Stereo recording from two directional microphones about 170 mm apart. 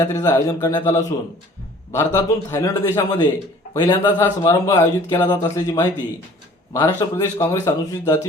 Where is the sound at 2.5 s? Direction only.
20° left (ahead or behind).